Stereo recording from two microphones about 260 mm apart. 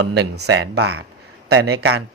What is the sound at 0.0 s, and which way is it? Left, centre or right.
Speech, right.